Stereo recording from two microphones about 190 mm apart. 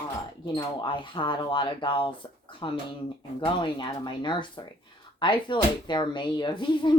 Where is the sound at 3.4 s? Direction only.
25° left (ahead or behind).